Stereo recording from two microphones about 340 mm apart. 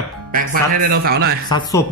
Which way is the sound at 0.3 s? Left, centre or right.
Right.